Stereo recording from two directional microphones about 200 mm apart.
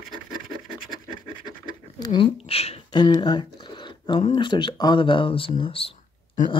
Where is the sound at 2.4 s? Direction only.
30° left (ahead or behind).